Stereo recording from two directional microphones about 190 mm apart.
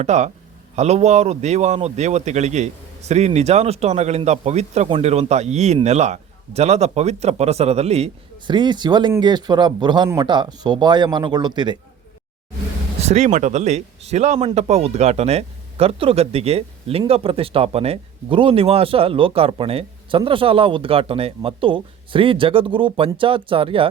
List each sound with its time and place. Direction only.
0.0 s speech: 40° right (ahead or behind); by 11.8 s 25° right (ahead or behind)
13.0 s speech: 35° right (ahead or behind)